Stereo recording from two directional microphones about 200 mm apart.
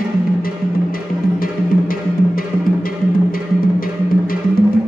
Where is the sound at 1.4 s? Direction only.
45° left (ahead or behind).